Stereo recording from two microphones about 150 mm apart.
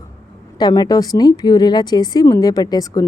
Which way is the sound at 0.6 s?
25° left (ahead or behind).